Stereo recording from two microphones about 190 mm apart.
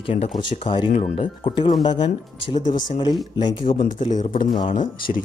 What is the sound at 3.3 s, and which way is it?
Speech, 25° left (ahead or behind).